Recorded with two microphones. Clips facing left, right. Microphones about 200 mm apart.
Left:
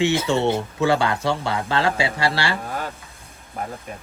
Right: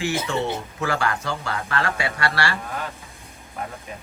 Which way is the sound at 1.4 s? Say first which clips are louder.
Left 4 dB; 30° left (ahead or behind).